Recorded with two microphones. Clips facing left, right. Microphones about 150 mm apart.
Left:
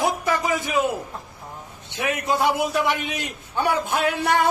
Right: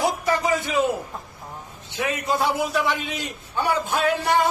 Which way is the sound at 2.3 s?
15° left (ahead or behind).